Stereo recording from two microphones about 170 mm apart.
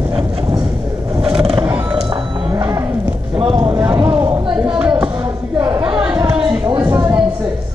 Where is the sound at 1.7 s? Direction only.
10° right (ahead or behind).